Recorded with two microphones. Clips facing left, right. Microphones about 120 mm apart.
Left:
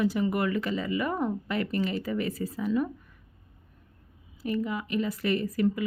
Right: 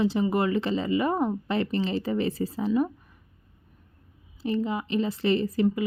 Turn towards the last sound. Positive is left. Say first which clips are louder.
# right 2 dB
turn(degrees=-25)  # may be behind; listen again after turning